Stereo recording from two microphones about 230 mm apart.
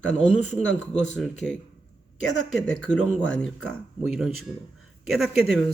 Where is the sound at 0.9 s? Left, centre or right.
Centre.